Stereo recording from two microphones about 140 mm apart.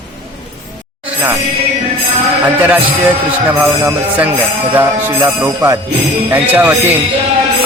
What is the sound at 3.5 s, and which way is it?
Speech, 10° right (ahead or behind).